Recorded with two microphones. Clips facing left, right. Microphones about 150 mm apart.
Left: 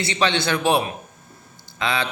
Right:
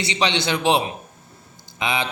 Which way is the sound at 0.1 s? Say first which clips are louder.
Left 1 dB; 20° right (ahead or behind).